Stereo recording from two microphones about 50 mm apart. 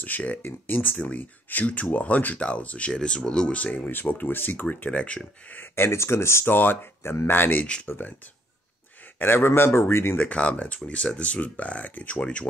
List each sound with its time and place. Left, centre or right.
0.0 s speech: left
2.3 s speech: left
2.9 s speech: centre
3.5 s speech: left
5.6 s speech: left
6.4 s speech: left
9.2 s speech: left
10.1 s speech: left